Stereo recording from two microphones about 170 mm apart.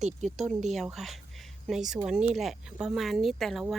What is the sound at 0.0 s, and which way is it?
Speech, 45° right (ahead or behind).